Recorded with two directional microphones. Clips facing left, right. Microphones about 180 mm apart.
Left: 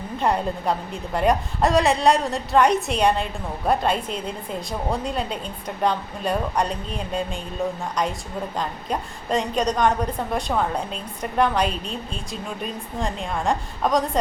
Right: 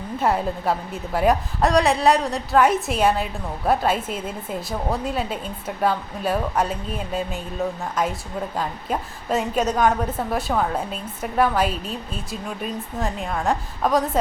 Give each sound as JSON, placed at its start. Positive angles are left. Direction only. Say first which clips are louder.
{"t": 0.2, "sound": "a woman's voice", "louder": "right 1 dB", "side_deg": -5}
{"t": 8.5, "sound": "a woman's voice", "louder": "right 1 dB", "side_deg": -5}